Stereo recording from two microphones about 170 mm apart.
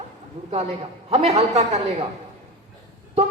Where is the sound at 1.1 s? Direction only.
40° right (ahead or behind).